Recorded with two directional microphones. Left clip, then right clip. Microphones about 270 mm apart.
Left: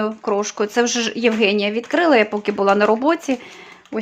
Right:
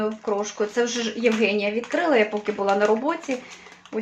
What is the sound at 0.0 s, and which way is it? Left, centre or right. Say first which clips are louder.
Speech: left 4 dB; left.